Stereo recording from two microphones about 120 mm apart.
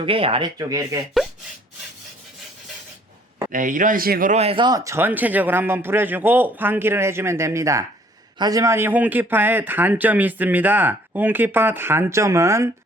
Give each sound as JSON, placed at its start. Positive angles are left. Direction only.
{"t": 0.0, "sound": "speech", "side_deg": -50}
{"t": 0.7, "sound": "a man's voice", "side_deg": -30}
{"t": 3.5, "sound": "speech", "side_deg": -90}
{"t": 4.4, "sound": "speech", "side_deg": -40}
{"t": 4.8, "sound": "a man's voice", "side_deg": -20}